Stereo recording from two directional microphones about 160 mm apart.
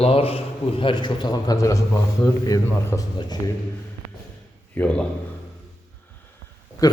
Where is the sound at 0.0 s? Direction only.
35° left (ahead or behind).